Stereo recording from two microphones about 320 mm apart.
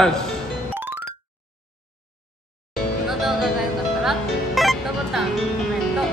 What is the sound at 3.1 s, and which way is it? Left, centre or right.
Music, centre.